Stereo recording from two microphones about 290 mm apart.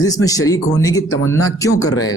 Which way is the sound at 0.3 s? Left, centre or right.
Centre.